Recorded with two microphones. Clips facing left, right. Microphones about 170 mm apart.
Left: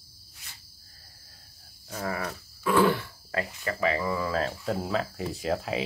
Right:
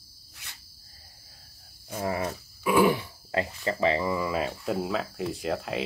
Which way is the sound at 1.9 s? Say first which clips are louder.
Right 3 dB; 20° right (ahead or behind).